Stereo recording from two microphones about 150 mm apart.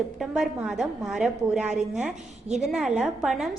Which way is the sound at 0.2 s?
Centre (ahead or behind).